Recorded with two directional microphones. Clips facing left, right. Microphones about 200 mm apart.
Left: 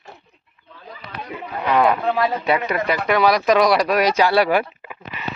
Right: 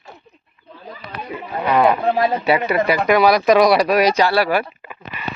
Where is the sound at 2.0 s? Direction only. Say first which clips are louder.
Right 2 dB; 35° right (ahead or behind).